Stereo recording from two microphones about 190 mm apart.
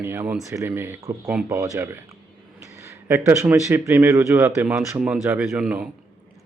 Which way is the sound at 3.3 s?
10° right (ahead or behind).